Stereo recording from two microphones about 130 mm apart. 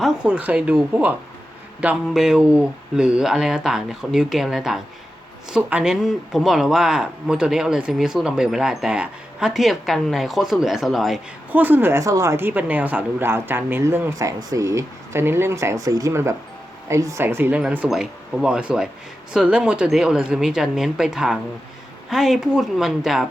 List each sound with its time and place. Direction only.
0.0 s speech: 5° right (ahead or behind)
11.5 s a woman's voice: 15° right (ahead or behind)